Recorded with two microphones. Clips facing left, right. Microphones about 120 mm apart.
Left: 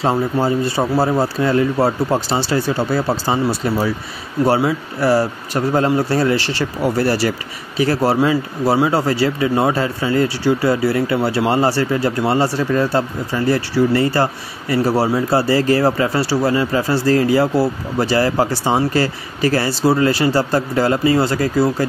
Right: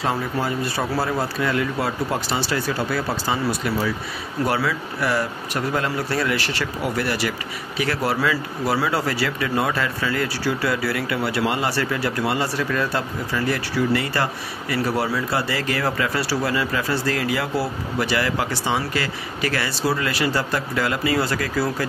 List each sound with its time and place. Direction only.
0.0 s speech: 30° left (ahead or behind)